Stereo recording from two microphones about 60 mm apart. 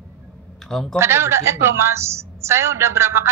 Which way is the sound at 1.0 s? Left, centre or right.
Right.